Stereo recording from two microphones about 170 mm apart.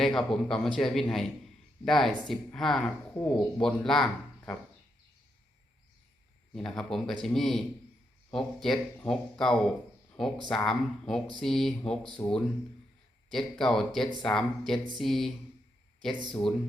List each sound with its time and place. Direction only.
0.0 s speech: centre (ahead or behind)
6.5 s speech: 5° left (ahead or behind)
12.2 s speech: 25° left (ahead or behind)
13.3 s speech: centre (ahead or behind)
16.3 s speech: 5° left (ahead or behind)